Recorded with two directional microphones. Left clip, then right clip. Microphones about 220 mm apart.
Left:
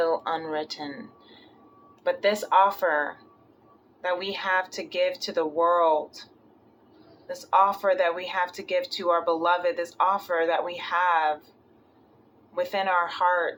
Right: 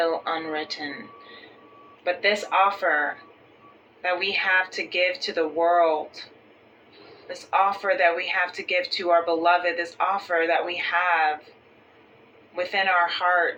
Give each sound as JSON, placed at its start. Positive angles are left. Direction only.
{"t": 0.0, "sound": "speech", "side_deg": 20}
{"t": 2.0, "sound": "speech", "side_deg": 25}
{"t": 4.0, "sound": "speech", "side_deg": 20}
{"t": 7.3, "sound": "speech", "side_deg": 20}
{"t": 12.5, "sound": "speech", "side_deg": 20}